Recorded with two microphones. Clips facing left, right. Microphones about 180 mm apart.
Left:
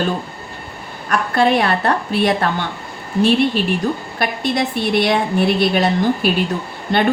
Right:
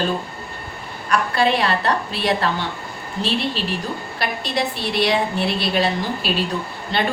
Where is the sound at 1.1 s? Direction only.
50° left (ahead or behind).